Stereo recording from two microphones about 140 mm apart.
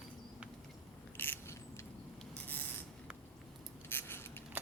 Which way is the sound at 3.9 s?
15° left (ahead or behind).